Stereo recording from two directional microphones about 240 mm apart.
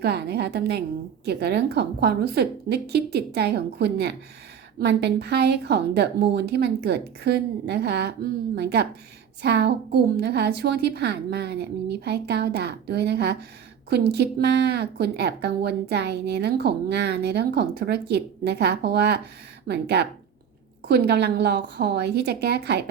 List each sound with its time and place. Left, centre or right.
0.0 s a woman's voice: right